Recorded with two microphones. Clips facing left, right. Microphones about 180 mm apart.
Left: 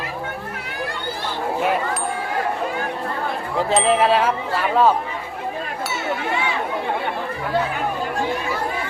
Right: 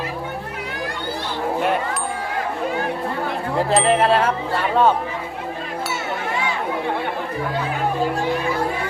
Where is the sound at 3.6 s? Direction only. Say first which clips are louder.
Even; centre (ahead or behind).